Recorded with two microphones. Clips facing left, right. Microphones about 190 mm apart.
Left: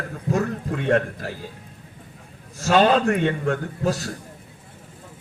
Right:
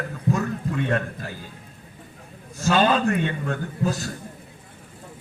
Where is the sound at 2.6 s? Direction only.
70° left (ahead or behind).